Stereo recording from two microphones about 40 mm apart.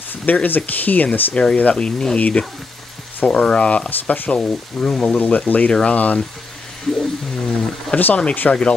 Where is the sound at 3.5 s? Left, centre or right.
Left.